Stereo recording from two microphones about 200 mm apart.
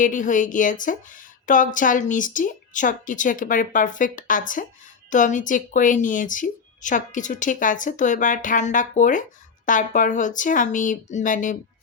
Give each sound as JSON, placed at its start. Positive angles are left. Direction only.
{"t": 0.0, "sound": "speech", "side_deg": 40}